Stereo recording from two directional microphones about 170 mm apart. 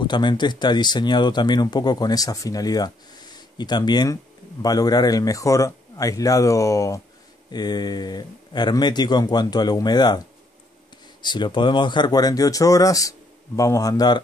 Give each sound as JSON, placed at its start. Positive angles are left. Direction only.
{"t": 0.0, "sound": "speech", "side_deg": 25}
{"t": 11.2, "sound": "speech", "side_deg": 25}